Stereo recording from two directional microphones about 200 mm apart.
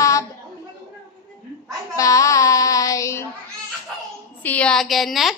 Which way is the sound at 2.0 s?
15° left (ahead or behind).